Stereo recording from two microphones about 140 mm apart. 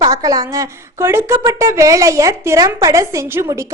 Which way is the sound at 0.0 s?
25° right (ahead or behind).